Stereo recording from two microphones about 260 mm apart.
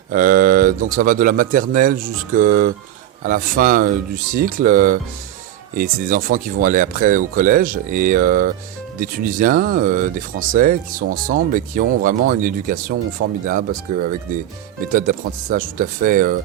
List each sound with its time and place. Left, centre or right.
0.1 s speech: right